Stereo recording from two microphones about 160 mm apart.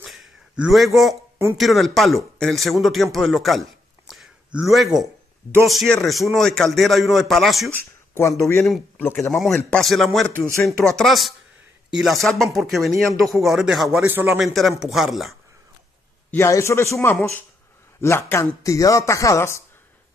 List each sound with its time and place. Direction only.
0.0 s a sound: centre (ahead or behind)
1.6 s a man's voice: centre (ahead or behind)
4.1 s a sound: 5° right (ahead or behind)
5.5 s a man's voice: centre (ahead or behind)
7.7 s speech: 15° left (ahead or behind)
8.6 s speech: centre (ahead or behind)
9.0 s speech: 15° left (ahead or behind)
9.4 s a man's voice: centre (ahead or behind)
14.0 s speech: 15° right (ahead or behind)
14.4 s a man's voice: centre (ahead or behind)
16.3 s speech: 20° left (ahead or behind)